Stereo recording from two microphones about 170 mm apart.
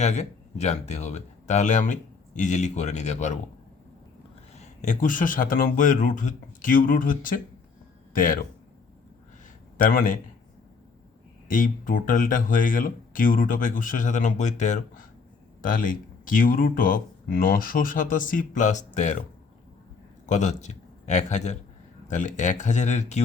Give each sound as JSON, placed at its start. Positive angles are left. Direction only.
{"t": 0.0, "sound": "speech", "side_deg": 40}
{"t": 4.5, "sound": "speech", "side_deg": 40}
{"t": 9.7, "sound": "speech", "side_deg": 55}
{"t": 11.5, "sound": "speech", "side_deg": 55}
{"t": 20.2, "sound": "a man's voice", "side_deg": 45}